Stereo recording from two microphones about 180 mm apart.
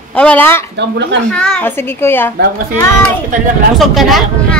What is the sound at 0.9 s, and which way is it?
Speech, 80° right.